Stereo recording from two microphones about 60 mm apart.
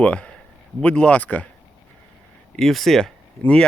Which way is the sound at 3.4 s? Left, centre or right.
Centre.